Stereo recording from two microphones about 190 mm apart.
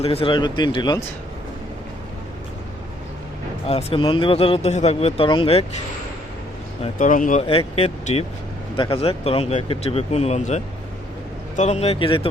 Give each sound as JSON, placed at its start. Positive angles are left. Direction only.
{"t": 0.0, "sound": "speech", "side_deg": 30}
{"t": 3.7, "sound": "speech", "side_deg": 30}
{"t": 6.8, "sound": "speech", "side_deg": 40}